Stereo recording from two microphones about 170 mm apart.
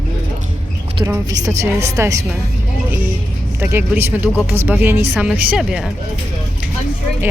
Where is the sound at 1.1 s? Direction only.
20° right (ahead or behind).